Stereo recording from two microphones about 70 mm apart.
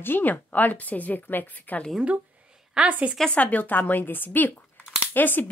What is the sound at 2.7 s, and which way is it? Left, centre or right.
Speech, centre.